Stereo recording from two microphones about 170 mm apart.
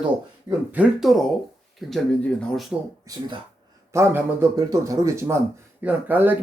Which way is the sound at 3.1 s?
20° right (ahead or behind).